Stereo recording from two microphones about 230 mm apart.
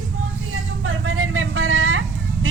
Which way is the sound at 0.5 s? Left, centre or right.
Right.